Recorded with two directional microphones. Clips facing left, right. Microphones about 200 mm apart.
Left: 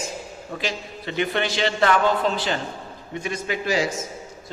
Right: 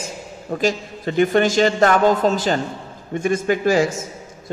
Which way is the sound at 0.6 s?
45° right (ahead or behind).